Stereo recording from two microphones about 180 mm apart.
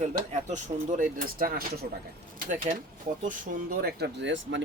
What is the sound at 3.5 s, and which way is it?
Speech, 45° right (ahead or behind).